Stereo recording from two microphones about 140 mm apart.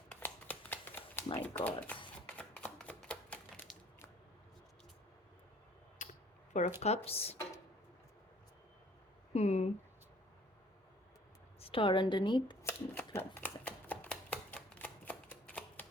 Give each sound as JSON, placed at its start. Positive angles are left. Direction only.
{"t": 0.1, "sound": "a sound", "side_deg": 10}
{"t": 2.2, "sound": "typewriter", "side_deg": 10}
{"t": 6.0, "sound": "a sound", "side_deg": 65}
{"t": 6.7, "sound": "speech", "side_deg": 50}
{"t": 9.3, "sound": "speech", "side_deg": 50}
{"t": 11.6, "sound": "a woman's voice", "side_deg": 40}
{"t": 12.6, "sound": "shuffling cards", "side_deg": 15}